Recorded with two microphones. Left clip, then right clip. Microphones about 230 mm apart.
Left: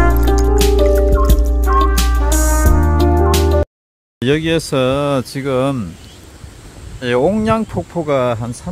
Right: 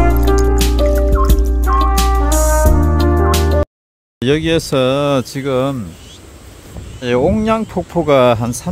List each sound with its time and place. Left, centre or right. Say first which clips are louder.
0.0 s music: right 1 dB; centre
4.2 s speech: right 1 dB; centre
7.0 s speech: even; centre